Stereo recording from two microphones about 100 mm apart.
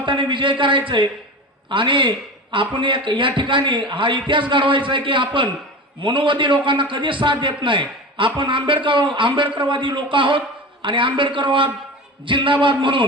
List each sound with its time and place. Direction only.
0.0 s a man's voice: 55° right (ahead or behind)